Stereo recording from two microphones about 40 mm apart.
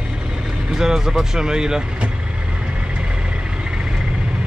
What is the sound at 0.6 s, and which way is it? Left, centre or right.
Speech, centre.